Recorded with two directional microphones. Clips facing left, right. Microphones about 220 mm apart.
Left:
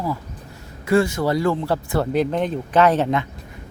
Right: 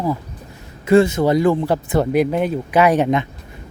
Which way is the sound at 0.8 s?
20° right (ahead or behind).